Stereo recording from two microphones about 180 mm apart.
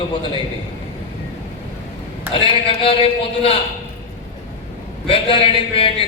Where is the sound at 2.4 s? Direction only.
30° left (ahead or behind).